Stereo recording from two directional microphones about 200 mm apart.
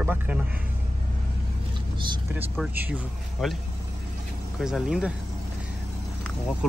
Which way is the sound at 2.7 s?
10° right (ahead or behind).